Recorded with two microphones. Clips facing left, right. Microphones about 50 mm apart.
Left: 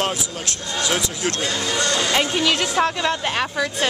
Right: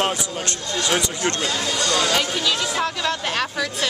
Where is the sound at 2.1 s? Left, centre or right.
Left.